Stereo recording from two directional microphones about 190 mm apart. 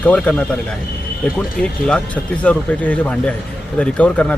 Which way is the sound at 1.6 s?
5° left (ahead or behind).